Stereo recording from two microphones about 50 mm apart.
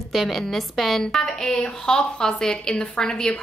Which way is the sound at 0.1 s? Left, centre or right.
Centre.